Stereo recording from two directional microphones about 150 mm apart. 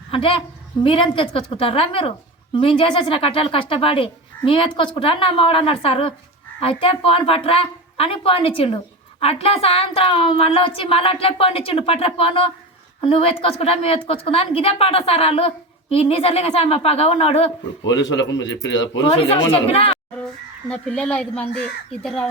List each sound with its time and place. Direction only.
0.1 s a woman's voice: 35° left (ahead or behind)
19.2 s a woman's voice: 40° left (ahead or behind)
20.7 s speech: 5° left (ahead or behind)